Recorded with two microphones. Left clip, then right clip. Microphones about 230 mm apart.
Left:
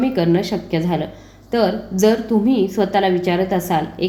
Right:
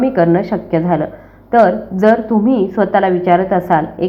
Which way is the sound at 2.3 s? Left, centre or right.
Centre.